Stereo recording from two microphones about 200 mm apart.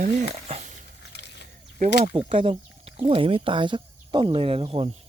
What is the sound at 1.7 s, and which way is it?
Speech, 30° right (ahead or behind).